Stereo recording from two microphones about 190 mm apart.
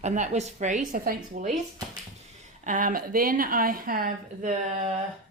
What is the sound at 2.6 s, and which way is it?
A woman's voice, 45° right (ahead or behind).